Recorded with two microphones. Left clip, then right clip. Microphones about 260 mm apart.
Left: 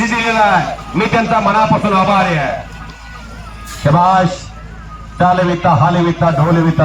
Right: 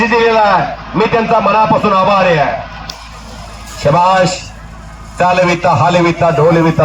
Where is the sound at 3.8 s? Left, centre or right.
Right.